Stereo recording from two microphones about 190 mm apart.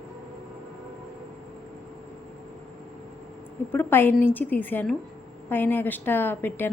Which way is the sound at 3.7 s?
10° left (ahead or behind).